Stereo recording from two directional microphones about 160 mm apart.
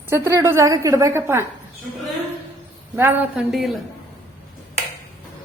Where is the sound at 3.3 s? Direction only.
Centre (ahead or behind).